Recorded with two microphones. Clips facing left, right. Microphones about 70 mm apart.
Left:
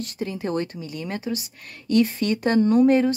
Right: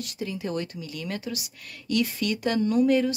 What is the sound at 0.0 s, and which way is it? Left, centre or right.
Speech, left.